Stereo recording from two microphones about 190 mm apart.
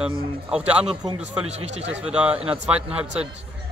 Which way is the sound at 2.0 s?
5° right (ahead or behind).